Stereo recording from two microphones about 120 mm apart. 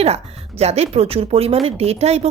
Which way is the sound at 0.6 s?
60° right (ahead or behind).